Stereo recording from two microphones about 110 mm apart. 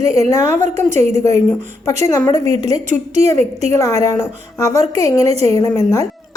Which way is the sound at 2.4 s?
80° right.